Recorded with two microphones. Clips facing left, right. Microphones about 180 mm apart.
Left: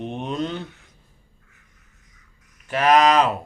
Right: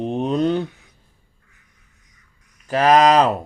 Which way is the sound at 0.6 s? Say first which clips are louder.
Right 7 dB; centre (ahead or behind).